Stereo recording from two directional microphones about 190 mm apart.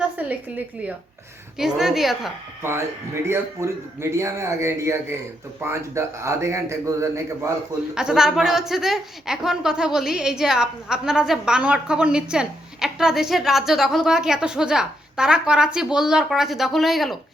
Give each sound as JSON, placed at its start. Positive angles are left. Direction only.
{"t": 0.2, "sound": "a woman's voice", "side_deg": -10}
{"t": 2.6, "sound": "speech", "side_deg": -10}
{"t": 7.9, "sound": "a woman's voice", "side_deg": -5}